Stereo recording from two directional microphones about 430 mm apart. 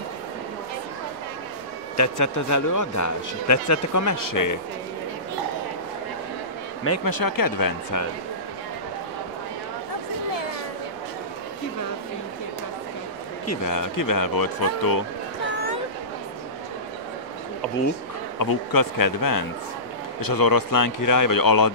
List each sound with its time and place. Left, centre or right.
2.0 s a man's voice: left
7.1 s speech: left
13.5 s speech: left
18.4 s speech: left